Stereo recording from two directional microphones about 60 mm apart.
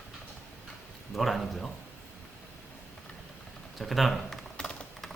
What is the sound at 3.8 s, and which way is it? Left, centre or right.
Speech, centre.